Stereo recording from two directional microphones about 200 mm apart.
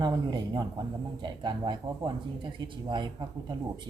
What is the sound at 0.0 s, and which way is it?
Speech, 20° right (ahead or behind).